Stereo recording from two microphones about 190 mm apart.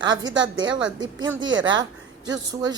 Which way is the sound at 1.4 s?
85° right.